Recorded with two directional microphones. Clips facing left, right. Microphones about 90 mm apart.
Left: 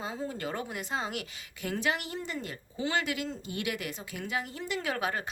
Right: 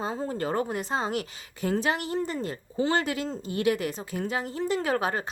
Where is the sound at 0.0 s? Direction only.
40° right (ahead or behind).